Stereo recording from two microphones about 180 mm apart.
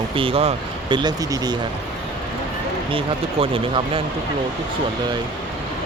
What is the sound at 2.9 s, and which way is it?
Speech, 30° right (ahead or behind).